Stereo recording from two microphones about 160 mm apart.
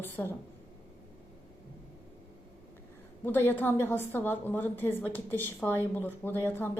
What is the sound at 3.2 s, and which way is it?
A woman's voice, 15° left (ahead or behind).